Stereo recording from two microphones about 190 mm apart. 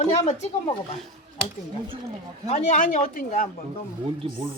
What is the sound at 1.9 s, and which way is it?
Speech, 25° right (ahead or behind).